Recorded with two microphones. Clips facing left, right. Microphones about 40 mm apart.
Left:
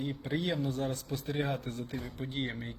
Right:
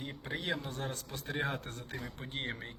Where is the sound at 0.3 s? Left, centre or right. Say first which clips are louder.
Left 3 dB; right.